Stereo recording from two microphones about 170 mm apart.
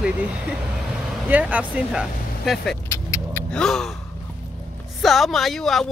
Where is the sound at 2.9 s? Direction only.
15° left (ahead or behind).